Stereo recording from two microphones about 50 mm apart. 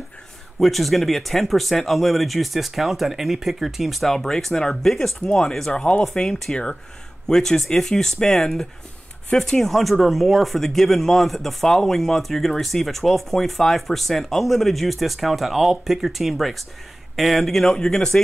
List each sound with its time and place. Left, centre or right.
0.6 s speech: centre
4.1 s speech: centre
5.7 s speech: centre
17.7 s speech: centre